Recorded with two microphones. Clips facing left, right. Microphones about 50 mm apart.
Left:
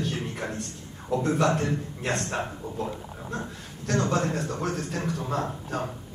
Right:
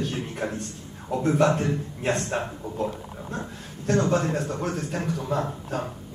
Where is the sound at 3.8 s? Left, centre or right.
Right.